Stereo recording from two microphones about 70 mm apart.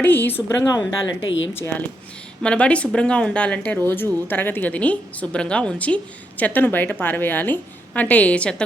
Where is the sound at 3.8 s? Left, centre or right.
Left.